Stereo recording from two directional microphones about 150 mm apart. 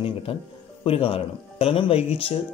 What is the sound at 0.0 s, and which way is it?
Speech, 35° left (ahead or behind).